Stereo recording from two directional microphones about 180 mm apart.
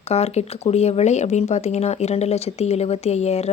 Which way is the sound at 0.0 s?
35° left (ahead or behind).